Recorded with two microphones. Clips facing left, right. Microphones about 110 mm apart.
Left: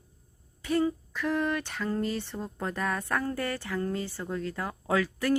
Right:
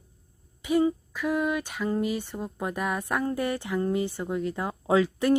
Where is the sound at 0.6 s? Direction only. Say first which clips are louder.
Right 3 dB; 15° right (ahead or behind).